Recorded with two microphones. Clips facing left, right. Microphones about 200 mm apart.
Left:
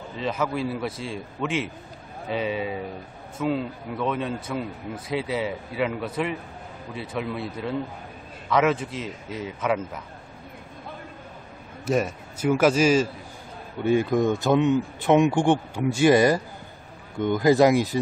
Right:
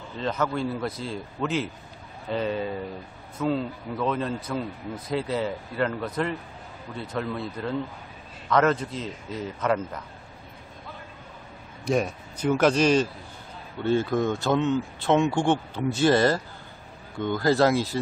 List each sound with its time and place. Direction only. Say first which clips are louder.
0.2 s speech: even; 5° left (ahead or behind)
11.8 s speech: left 1 dB; 5° left (ahead or behind)